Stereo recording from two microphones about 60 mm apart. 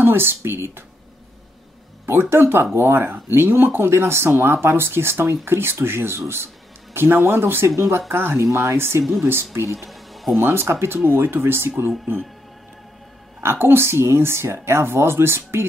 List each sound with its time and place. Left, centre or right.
0.0 s speech: right
2.0 s speech: right
8.4 s speech: right
8.7 s speech: right
9.8 s music: centre
10.4 s speech: right
13.4 s speech: right